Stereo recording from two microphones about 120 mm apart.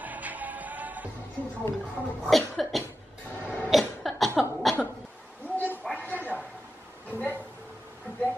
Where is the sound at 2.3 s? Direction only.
Centre (ahead or behind).